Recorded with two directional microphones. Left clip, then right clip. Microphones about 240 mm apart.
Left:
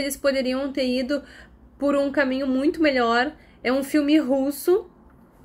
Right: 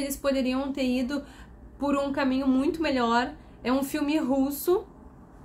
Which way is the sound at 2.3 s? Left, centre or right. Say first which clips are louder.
Left 3 dB; centre.